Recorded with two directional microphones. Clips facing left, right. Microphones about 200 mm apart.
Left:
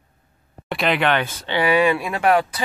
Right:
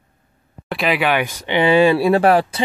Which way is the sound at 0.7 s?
Centre (ahead or behind).